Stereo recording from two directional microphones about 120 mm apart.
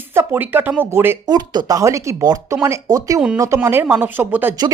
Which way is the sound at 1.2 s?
35° right (ahead or behind).